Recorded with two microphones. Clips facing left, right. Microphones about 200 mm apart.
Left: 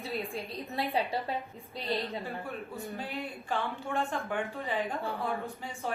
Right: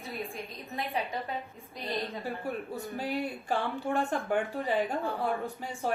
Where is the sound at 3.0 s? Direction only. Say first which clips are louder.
Right 5 dB; 35° right (ahead or behind).